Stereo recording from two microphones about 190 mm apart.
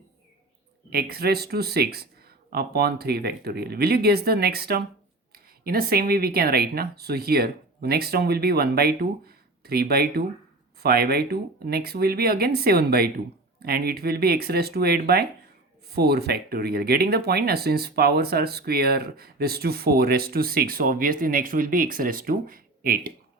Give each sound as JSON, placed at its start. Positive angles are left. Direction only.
{"t": 0.9, "sound": "speech", "side_deg": -55}